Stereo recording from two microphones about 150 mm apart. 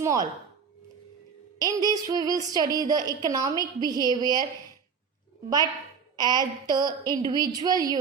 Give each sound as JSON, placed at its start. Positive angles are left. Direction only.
{"t": 0.0, "sound": "speech", "side_deg": -25}
{"t": 1.5, "sound": "speech", "side_deg": -25}
{"t": 6.1, "sound": "speech", "side_deg": -25}